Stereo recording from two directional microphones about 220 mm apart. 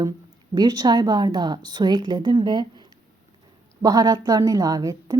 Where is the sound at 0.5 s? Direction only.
20° right (ahead or behind).